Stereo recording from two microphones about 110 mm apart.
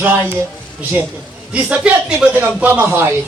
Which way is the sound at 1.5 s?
10° right (ahead or behind).